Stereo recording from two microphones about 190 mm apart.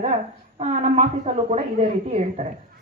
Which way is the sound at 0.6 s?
35° right (ahead or behind).